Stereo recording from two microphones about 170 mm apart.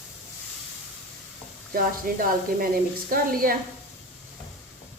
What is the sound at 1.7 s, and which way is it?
Speech, 55° right (ahead or behind).